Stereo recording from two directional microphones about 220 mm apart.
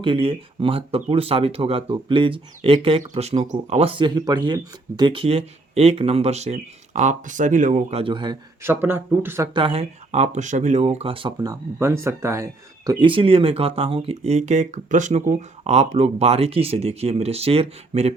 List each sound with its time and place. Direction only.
0.0 s speech: 25° right (ahead or behind)
9.6 s speech: 25° right (ahead or behind)